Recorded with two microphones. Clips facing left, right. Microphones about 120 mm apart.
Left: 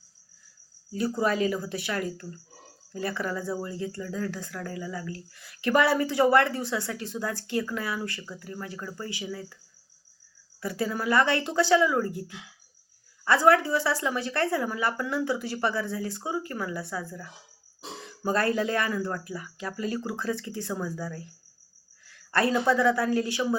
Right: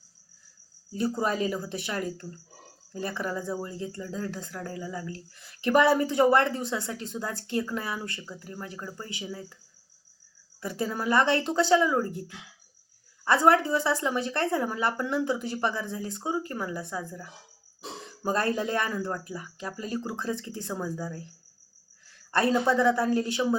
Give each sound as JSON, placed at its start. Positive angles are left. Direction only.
{"t": 0.9, "sound": "speech", "side_deg": -25}
{"t": 10.6, "sound": "speech", "side_deg": -25}
{"t": 13.2, "sound": "speech", "side_deg": -25}
{"t": 22.3, "sound": "speech", "side_deg": -20}